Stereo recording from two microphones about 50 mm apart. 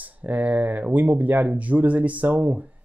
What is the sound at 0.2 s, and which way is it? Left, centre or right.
Speech, right.